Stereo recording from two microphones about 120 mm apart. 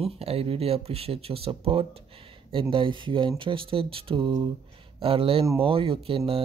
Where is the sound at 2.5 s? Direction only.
45° right (ahead or behind).